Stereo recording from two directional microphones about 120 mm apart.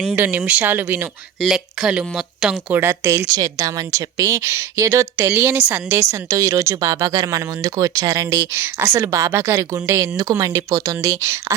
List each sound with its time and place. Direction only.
0.1 s speech: 15° right (ahead or behind)
1.4 s speech: 5° right (ahead or behind); by 11.5 s 25° right (ahead or behind)